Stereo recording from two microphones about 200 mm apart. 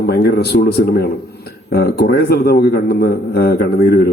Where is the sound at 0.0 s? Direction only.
55° left (ahead or behind).